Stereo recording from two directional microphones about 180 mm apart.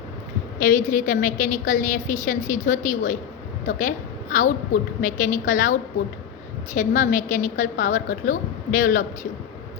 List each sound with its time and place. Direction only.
0.6 s a woman's voice: 45° left (ahead or behind)
6.7 s a woman's voice: 45° left (ahead or behind)